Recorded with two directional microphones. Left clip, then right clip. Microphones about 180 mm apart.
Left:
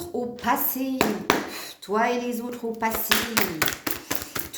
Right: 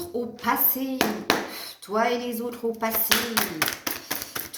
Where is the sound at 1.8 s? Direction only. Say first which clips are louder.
Left 1 dB; 50° left (ahead or behind).